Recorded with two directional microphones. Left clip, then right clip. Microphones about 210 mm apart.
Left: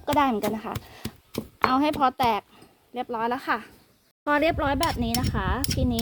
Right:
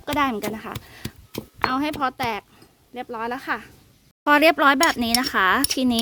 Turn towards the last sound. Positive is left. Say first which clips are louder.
# right 8 dB
turn(degrees=-35)  # may be behind; listen again after turning